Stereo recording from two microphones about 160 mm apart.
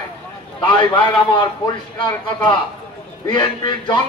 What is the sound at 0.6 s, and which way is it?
A man's voice, 30° left (ahead or behind).